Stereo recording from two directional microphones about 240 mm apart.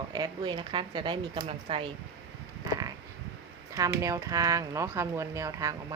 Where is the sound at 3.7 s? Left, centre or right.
Centre.